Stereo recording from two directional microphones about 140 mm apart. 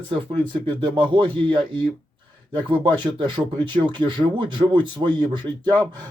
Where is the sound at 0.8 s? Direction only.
35° right (ahead or behind).